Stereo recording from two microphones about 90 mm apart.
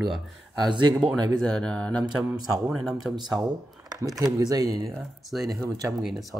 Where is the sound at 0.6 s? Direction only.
60° right (ahead or behind).